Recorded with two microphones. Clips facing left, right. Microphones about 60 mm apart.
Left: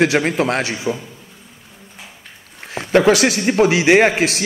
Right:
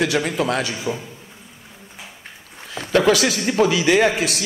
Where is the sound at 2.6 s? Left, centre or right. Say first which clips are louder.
Left 4 dB; left.